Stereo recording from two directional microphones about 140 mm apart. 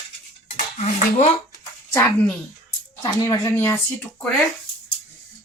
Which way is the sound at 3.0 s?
25° left (ahead or behind).